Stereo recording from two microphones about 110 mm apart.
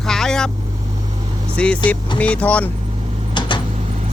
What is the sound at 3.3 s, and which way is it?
Vehicle, 45° left (ahead or behind).